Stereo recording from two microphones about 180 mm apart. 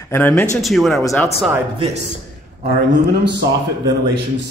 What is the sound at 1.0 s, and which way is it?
Speech, 15° left (ahead or behind).